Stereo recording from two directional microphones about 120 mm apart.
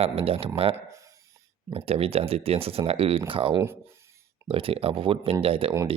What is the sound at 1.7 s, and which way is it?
Speech, 55° right (ahead or behind).